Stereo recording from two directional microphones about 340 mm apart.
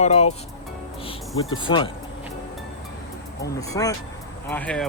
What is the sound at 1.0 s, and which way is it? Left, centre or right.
Cricket, centre.